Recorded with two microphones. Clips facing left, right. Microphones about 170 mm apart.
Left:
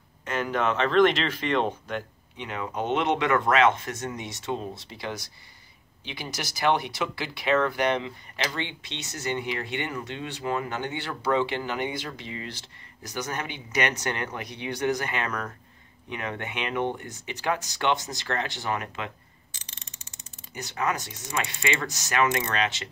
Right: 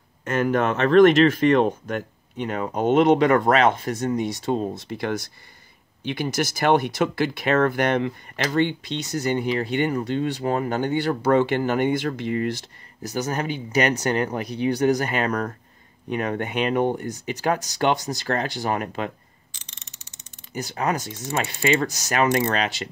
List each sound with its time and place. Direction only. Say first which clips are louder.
0.2 s speech: right 6 dB; 45° right (ahead or behind)
4.8 s speech: right 8 dB; 50° right (ahead or behind)
13.1 s speech: right 7 dB; 35° right (ahead or behind)
20.5 s speech: right 4 dB; 35° right (ahead or behind)